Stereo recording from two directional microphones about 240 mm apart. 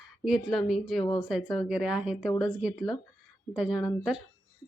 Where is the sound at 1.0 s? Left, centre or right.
Centre.